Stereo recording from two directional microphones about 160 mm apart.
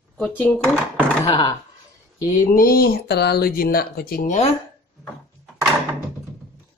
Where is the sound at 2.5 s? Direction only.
65° left (ahead or behind).